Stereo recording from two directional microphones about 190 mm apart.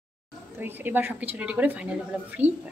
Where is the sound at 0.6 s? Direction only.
10° right (ahead or behind).